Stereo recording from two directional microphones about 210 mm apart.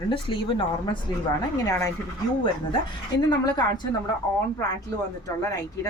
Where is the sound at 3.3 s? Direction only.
20° left (ahead or behind).